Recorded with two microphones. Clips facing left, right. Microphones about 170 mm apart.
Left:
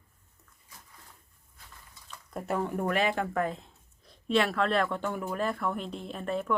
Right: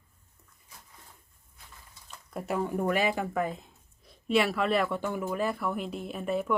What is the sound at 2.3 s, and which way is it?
Speech, 5° right (ahead or behind).